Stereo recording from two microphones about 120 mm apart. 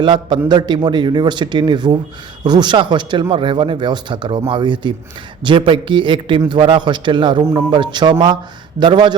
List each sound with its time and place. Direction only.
0.0 s speech: 40° right (ahead or behind)